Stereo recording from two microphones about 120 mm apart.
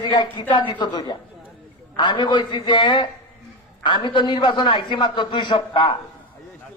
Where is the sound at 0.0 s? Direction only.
40° left (ahead or behind).